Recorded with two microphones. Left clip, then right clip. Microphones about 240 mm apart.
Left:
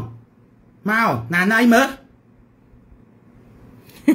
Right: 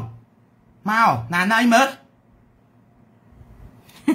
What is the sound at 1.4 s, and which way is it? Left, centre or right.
Speech, centre.